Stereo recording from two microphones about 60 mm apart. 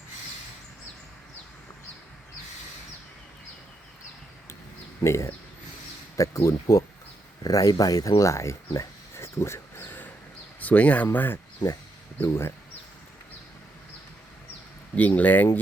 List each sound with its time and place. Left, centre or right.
5.0 s speech: left
7.4 s speech: left
12.2 s speech: left
14.9 s speech: left